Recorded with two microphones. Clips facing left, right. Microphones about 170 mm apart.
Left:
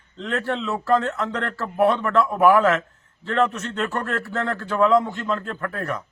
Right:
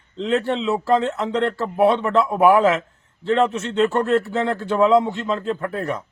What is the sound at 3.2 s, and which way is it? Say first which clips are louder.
Speech: right 3 dB; 30° right (ahead or behind).